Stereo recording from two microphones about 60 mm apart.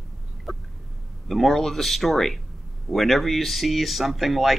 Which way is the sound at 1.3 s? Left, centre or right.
Centre.